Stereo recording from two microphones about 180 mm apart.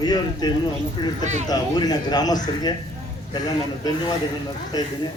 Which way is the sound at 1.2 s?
40° right (ahead or behind).